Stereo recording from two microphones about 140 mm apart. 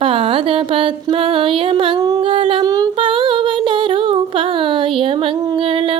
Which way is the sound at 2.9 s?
35° right (ahead or behind).